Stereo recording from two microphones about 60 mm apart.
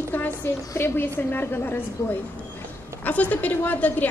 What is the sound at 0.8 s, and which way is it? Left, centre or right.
A woman's voice, left.